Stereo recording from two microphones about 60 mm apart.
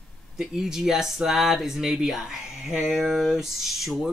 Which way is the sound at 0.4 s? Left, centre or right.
Centre.